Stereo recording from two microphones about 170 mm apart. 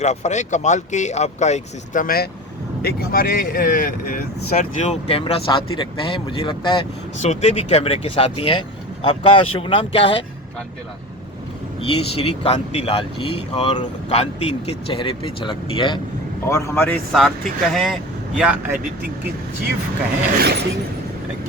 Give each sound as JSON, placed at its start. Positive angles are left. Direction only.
{"t": 0.0, "sound": "speech", "side_deg": 40}
{"t": 7.2, "sound": "speech", "side_deg": 40}
{"t": 11.8, "sound": "speech", "side_deg": 35}
{"t": 16.5, "sound": "a man's voice", "side_deg": 15}
{"t": 17.1, "sound": "speech", "side_deg": 0}
{"t": 20.4, "sound": "a sound", "side_deg": -70}